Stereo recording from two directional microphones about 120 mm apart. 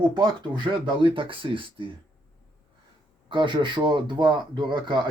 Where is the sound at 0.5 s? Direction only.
40° right (ahead or behind).